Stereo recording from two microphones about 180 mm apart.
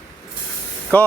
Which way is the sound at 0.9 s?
10° left (ahead or behind).